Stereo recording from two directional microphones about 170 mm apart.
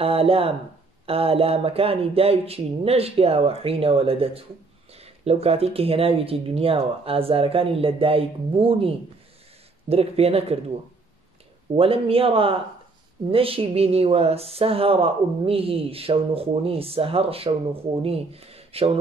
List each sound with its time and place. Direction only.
0.0 s speech: 35° right (ahead or behind)
11.7 s speech: 35° right (ahead or behind)